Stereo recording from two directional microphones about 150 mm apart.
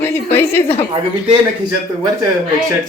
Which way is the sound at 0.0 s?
15° left (ahead or behind).